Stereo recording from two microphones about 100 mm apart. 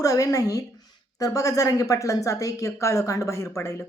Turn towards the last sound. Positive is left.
turn(degrees=30)  # may be behind; listen again after turning